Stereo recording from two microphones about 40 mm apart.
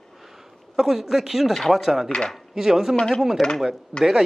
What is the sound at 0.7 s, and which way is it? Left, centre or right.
Speech, centre.